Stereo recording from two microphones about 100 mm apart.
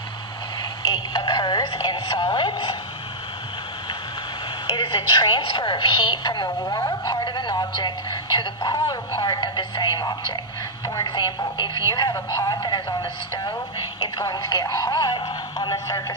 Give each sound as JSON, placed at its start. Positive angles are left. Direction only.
{"t": 0.6, "sound": "speech", "side_deg": 45}
{"t": 4.6, "sound": "a woman's voice", "side_deg": 55}
{"t": 11.1, "sound": "a woman's voice", "side_deg": 45}